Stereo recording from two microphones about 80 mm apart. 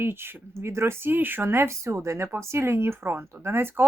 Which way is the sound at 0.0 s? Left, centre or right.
Right.